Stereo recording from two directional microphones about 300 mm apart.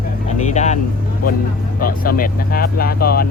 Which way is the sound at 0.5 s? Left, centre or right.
Left.